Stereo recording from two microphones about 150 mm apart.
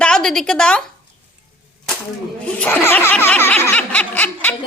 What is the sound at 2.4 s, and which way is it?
Snicker, 10° left (ahead or behind).